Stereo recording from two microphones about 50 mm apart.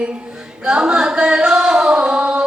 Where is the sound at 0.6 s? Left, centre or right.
Centre.